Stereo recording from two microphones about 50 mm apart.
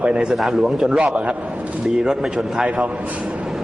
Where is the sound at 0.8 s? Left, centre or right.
Centre.